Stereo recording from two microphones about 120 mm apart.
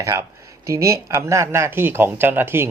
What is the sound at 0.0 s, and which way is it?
Speech, 25° right (ahead or behind).